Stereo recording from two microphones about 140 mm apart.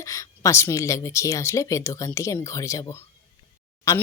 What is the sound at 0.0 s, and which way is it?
Speech, 25° left (ahead or behind).